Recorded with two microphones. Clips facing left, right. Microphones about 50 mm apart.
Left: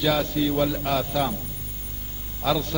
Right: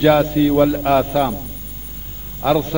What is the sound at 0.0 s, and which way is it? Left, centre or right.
A man's voice, right.